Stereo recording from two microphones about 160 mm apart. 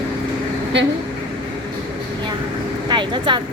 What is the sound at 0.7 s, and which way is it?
Speech, 90° right.